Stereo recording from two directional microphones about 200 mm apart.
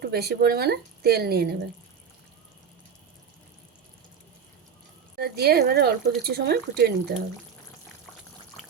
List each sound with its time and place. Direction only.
0.0 s speech: 55° right (ahead or behind)
5.1 s speech: 50° right (ahead or behind)